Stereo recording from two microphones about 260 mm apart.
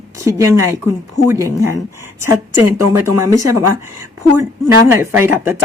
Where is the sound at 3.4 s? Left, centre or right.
Right.